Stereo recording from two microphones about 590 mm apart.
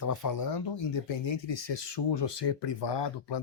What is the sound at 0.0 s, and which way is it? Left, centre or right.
Speech, left.